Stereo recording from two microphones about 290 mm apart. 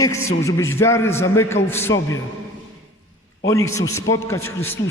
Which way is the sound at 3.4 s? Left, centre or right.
Centre.